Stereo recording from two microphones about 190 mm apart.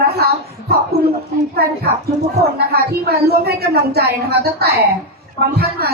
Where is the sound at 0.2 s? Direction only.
55° right (ahead or behind).